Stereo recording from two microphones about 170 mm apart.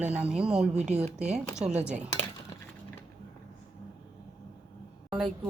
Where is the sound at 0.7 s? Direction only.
40° right (ahead or behind).